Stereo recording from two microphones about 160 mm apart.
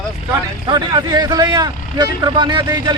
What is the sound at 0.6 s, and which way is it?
Speech, 30° right (ahead or behind).